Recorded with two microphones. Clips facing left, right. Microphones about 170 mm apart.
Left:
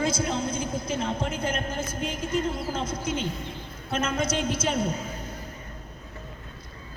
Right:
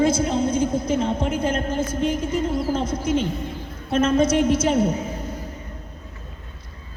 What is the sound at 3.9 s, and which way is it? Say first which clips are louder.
Speech: right 9 dB; 30° right (ahead or behind).